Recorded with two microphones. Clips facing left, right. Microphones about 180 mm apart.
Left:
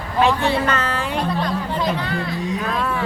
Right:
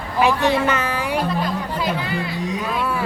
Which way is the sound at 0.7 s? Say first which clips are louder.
Right 1 dB; 15° right (ahead or behind).